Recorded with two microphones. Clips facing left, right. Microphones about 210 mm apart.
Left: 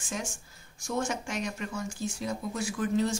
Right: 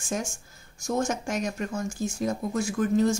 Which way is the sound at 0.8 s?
45° right (ahead or behind).